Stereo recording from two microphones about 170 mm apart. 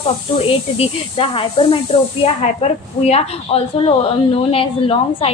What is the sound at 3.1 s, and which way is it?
A woman's voice, 35° left (ahead or behind).